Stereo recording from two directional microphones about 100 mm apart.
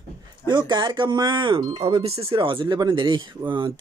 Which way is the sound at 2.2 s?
60° right (ahead or behind).